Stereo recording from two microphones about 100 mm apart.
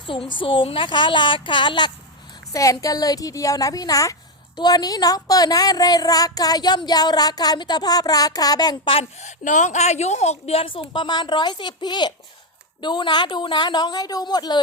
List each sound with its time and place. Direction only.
0.0 s a woman's voice: 55° left (ahead or behind)
2.5 s a woman's voice: 35° left (ahead or behind)
9.8 s a woman's voice: 90° left; by 14.6 s 45° left (ahead or behind)